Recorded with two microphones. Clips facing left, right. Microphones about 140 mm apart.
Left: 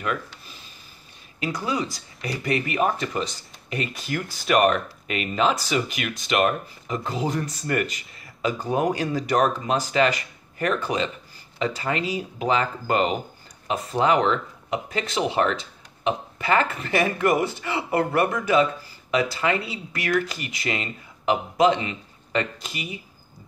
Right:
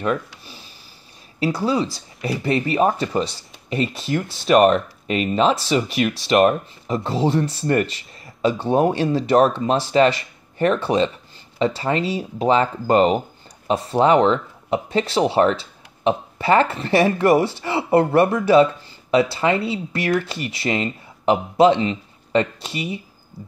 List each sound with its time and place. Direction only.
1.4 s speech: 30° right (ahead or behind)